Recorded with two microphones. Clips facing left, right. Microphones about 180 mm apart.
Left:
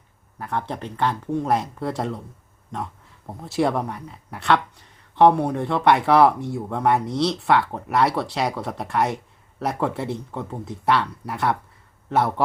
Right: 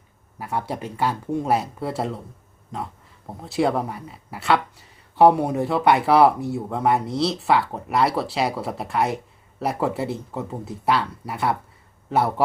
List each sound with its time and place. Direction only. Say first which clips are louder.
0.3 s speech: right 1 dB; 10° right (ahead or behind)
3.4 s speech: even; centre (ahead or behind)